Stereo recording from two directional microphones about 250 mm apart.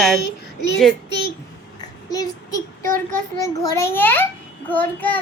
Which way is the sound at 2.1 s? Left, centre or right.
Centre.